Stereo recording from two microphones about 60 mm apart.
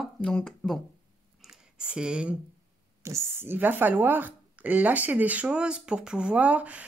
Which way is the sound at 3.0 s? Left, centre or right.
Right.